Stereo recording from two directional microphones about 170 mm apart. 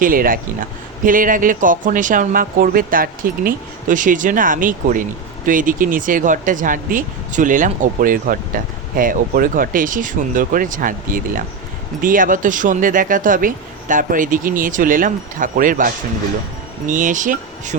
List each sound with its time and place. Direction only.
0.0 s speech: 55° right (ahead or behind)